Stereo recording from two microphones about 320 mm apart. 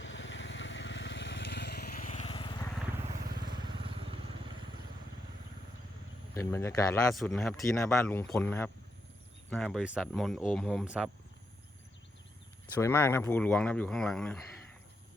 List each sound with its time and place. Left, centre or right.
0.0 s vehicle: left; by 2.6 s centre
3.2 s vehicle: right
3.5 s vehicle: centre
6.3 s speech: centre
12.7 s speech: centre